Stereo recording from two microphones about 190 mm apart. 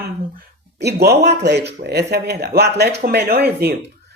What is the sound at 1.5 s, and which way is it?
A man's voice, 60° right (ahead or behind).